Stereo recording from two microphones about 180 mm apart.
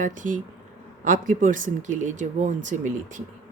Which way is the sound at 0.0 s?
45° right (ahead or behind).